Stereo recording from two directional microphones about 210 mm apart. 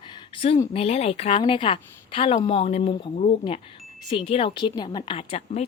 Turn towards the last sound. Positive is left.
turn(degrees=30)  # may be behind; listen again after turning